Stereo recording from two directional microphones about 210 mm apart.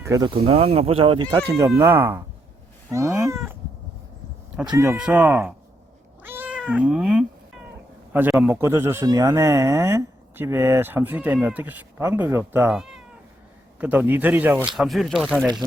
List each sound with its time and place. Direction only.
0.0 s speech: 15° right (ahead or behind)
1.8 s a man's voice: 10° right (ahead or behind)
4.7 s a man's voice: 10° right (ahead or behind)
6.2 s cat: 10° right (ahead or behind)
8.1 s a man's voice: 10° right (ahead or behind)